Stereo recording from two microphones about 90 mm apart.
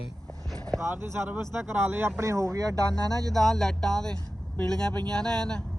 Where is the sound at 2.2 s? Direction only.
35° right (ahead or behind).